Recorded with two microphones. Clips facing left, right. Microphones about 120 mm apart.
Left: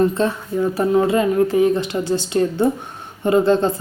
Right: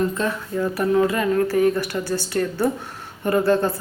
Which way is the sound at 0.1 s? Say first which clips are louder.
Left 4 dB; 30° left (ahead or behind).